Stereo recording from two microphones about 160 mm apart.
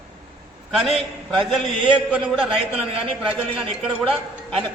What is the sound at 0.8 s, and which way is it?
Speech, centre (ahead or behind).